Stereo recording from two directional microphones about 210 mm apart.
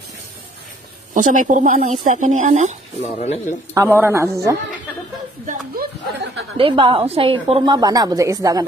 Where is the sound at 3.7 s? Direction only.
10° right (ahead or behind).